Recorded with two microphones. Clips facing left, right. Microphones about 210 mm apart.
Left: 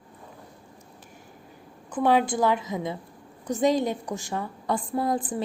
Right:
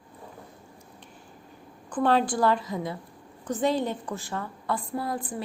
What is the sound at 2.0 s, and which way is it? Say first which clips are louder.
A woman's voice: left 1 dB; 10° left (ahead or behind).